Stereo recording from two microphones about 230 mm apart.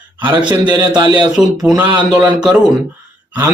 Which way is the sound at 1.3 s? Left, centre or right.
Centre.